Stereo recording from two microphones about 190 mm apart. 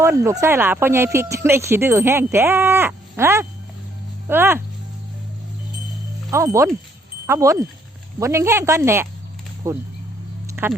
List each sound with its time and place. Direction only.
0.0 s speech: 15° right (ahead or behind)
6.3 s speech: 15° right (ahead or behind)
10.4 s a sound: 10° right (ahead or behind)